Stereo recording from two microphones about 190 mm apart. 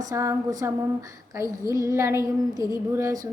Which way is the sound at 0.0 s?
15° right (ahead or behind).